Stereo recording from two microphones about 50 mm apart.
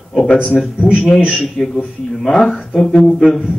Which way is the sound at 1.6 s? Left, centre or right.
Centre.